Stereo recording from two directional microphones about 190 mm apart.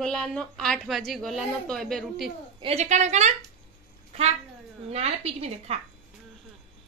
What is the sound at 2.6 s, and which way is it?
Speech, 35° right (ahead or behind).